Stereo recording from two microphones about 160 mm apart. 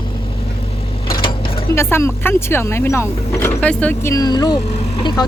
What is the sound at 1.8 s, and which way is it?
Speech, 15° left (ahead or behind).